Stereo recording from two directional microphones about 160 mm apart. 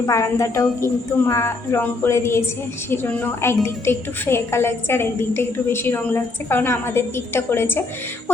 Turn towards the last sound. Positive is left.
turn(degrees=15)  # may be behind; listen again after turning